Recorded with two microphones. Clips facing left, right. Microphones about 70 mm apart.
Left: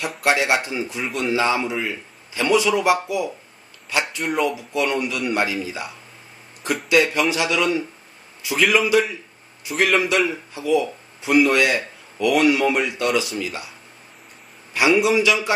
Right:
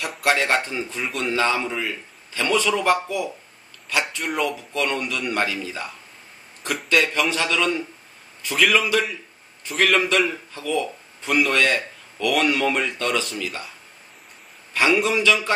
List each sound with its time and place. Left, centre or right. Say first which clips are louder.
0.0 s a man's voice: left 1 dB; centre